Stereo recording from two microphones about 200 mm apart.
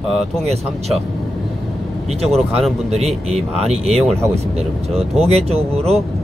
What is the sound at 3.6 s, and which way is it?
Speech, 30° right (ahead or behind).